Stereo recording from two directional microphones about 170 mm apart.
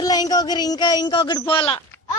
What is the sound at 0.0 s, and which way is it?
Speech, 20° left (ahead or behind).